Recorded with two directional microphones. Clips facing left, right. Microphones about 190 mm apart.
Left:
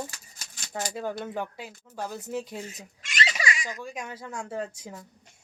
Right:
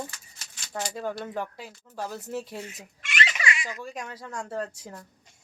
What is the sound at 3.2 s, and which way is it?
Baby laughter, 35° left (ahead or behind).